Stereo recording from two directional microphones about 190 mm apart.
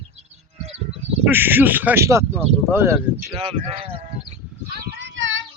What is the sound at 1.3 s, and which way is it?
Speech, 10° right (ahead or behind).